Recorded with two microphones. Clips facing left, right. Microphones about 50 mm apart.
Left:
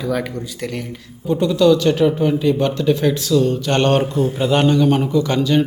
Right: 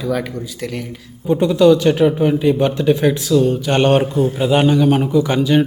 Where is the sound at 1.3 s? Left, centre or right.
Right.